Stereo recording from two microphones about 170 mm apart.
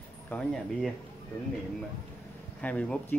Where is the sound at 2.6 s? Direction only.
5° left (ahead or behind).